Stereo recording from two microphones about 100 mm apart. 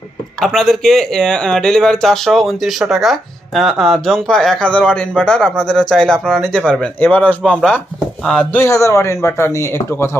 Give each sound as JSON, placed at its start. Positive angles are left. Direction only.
{"t": 0.3, "sound": "speech", "side_deg": 5}
{"t": 8.2, "sound": "speech", "side_deg": 5}
{"t": 8.5, "sound": "speech", "side_deg": 30}